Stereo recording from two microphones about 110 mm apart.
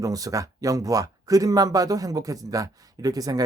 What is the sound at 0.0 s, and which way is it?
Speech, 30° right (ahead or behind).